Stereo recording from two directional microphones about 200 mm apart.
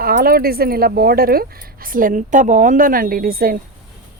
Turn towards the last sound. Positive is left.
turn(degrees=-45)  # may be behind; listen again after turning